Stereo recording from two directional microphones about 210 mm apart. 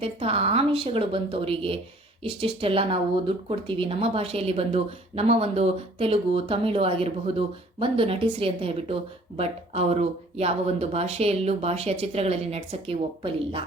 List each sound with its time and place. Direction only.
0.0 s speech: 25° right (ahead or behind)